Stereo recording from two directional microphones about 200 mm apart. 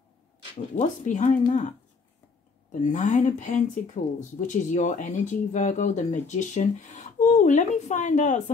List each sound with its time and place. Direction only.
0.7 s speech: 40° left (ahead or behind)
2.8 s speech: 40° left (ahead or behind)